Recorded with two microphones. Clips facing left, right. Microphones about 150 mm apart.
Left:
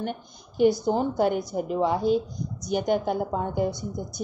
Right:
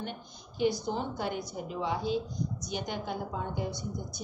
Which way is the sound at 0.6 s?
45° left (ahead or behind).